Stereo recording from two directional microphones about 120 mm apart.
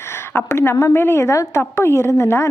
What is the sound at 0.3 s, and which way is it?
A woman's voice, 20° left (ahead or behind).